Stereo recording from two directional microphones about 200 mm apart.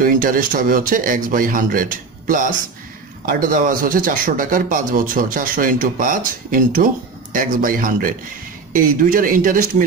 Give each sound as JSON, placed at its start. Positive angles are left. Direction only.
{"t": 0.0, "sound": "speech", "side_deg": -45}